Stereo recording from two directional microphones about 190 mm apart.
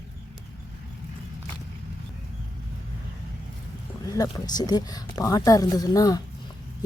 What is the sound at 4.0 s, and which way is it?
Speech, 20° left (ahead or behind).